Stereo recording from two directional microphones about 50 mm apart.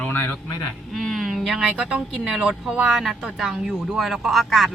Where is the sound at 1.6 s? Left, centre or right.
Centre.